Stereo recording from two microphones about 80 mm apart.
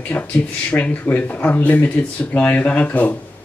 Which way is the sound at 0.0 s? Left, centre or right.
Centre.